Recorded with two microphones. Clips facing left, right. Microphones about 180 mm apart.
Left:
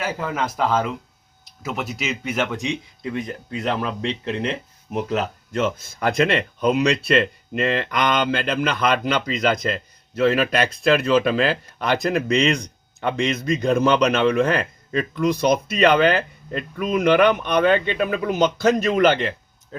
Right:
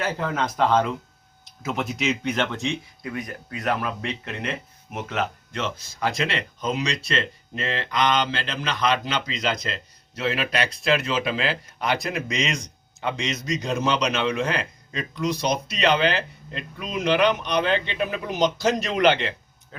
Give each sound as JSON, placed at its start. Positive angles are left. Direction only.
{"t": 0.0, "sound": "speech", "side_deg": 5}
{"t": 3.0, "sound": "speech", "side_deg": 25}